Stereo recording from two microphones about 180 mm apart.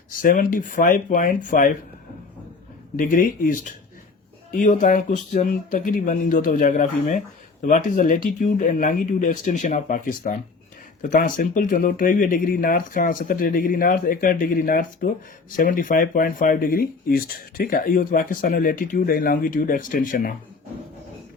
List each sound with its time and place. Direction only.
0.1 s speech: 50° left (ahead or behind)
2.9 s speech: 50° left (ahead or behind)